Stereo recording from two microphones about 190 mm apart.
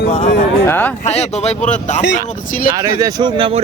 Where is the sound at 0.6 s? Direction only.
10° left (ahead or behind).